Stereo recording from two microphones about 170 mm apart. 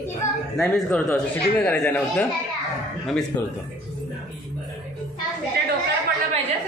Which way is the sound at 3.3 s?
10° left (ahead or behind).